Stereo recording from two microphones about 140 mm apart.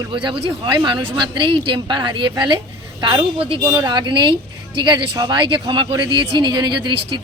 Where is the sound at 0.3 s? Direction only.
35° right (ahead or behind).